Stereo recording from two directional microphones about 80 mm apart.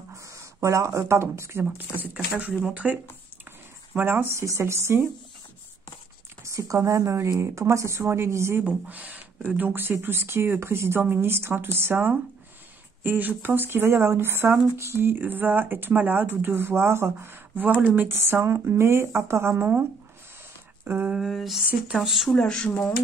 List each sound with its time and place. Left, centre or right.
0.1 s speech: right
1.8 s speech: right
6.4 s speech: right
8.6 s speech: centre
20.8 s a sound: right
21.1 s a sound: centre
22.4 s speech: centre